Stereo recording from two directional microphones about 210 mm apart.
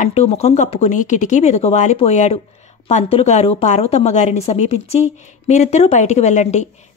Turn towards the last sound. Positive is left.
turn(degrees=35)  # may be behind; listen again after turning